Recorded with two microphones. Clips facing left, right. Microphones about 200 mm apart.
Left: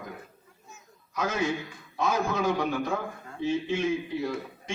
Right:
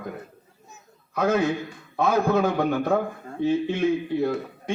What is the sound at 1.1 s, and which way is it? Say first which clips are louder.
A man's voice: right 6 dB; 60° right (ahead or behind).